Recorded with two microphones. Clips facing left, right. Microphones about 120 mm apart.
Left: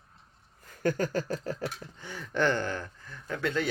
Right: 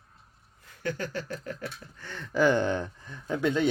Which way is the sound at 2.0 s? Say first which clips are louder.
Right 1 dB; 15° left (ahead or behind).